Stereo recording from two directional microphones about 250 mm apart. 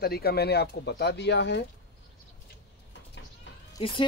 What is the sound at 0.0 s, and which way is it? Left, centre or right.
Speech, left.